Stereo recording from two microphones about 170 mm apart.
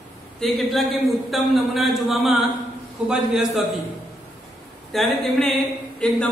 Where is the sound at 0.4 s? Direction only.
Centre (ahead or behind).